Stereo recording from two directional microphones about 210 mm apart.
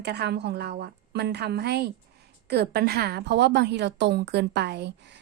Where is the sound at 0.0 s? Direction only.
50° right (ahead or behind).